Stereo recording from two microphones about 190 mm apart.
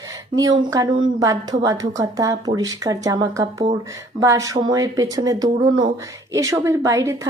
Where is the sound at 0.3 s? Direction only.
20° right (ahead or behind).